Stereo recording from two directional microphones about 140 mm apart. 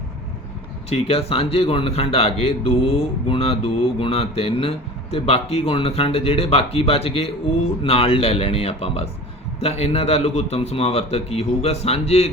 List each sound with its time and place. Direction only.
0.9 s a man's voice: 45° left (ahead or behind)